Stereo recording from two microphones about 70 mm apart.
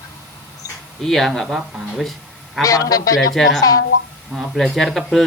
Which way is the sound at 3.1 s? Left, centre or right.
Centre.